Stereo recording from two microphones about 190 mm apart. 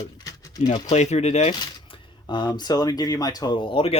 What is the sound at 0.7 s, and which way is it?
Speech, 30° left (ahead or behind).